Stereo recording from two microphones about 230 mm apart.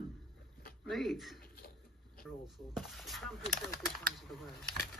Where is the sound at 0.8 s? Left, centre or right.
Centre.